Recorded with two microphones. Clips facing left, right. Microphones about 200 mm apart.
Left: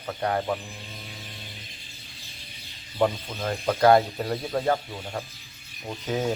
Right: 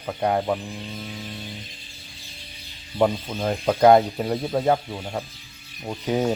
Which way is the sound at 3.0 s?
15° right (ahead or behind).